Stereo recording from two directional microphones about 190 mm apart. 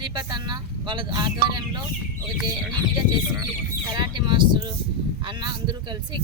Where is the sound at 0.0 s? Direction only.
25° right (ahead or behind).